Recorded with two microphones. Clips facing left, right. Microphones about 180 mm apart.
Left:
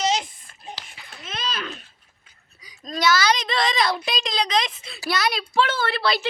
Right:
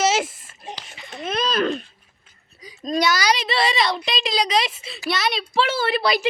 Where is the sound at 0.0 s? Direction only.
90° right.